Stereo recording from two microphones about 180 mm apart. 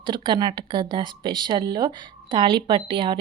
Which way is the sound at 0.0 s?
25° right (ahead or behind).